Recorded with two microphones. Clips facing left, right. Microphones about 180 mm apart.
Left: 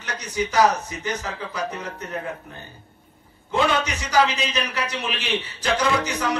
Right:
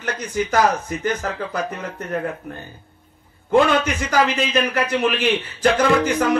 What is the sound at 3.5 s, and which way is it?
A man's voice, 50° right (ahead or behind).